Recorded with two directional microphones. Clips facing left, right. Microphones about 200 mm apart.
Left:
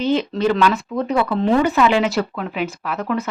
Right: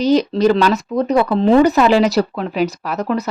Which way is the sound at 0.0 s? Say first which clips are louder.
Right 5 dB; 40° right (ahead or behind).